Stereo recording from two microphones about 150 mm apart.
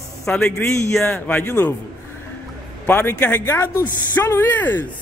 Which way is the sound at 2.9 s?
15° left (ahead or behind).